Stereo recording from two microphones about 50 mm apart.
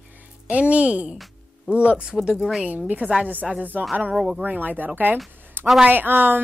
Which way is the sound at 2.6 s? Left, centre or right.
Right.